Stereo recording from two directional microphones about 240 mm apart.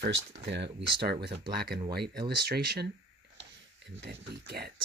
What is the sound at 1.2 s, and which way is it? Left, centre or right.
Speech, right.